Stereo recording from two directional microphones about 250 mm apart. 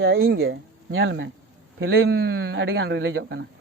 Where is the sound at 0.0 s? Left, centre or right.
Right.